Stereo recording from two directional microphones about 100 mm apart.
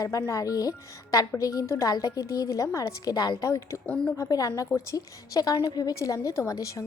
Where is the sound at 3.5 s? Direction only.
30° left (ahead or behind).